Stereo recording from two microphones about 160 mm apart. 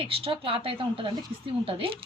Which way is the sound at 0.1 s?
35° right (ahead or behind).